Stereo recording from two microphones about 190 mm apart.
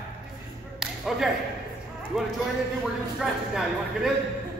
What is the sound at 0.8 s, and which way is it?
Whip, centre (ahead or behind).